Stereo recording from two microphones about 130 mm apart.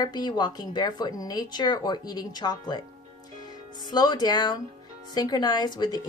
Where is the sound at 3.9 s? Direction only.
30° left (ahead or behind).